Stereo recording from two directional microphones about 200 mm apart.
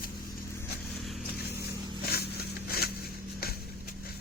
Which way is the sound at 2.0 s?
50° left (ahead or behind).